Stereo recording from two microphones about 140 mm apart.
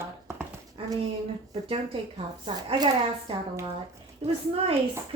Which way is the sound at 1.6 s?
45° right (ahead or behind).